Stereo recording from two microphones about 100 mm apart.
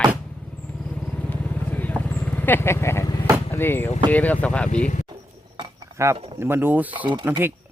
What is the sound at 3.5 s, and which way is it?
Speech, 20° left (ahead or behind).